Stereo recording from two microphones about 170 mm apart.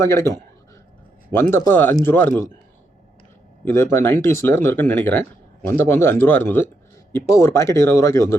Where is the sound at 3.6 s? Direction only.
15° left (ahead or behind).